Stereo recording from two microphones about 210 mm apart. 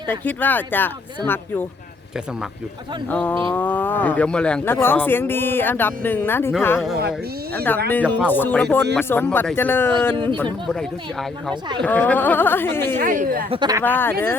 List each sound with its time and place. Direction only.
0.1 s speech: 10° left (ahead or behind)
3.1 s speech: 5° left (ahead or behind)
13.0 s speech: 40° right (ahead or behind)
13.5 s speech: 20° right (ahead or behind)
13.8 s speech: 10° left (ahead or behind)